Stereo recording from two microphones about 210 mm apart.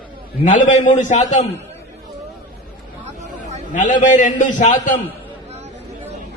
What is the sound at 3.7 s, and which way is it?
A man's voice, 35° left (ahead or behind).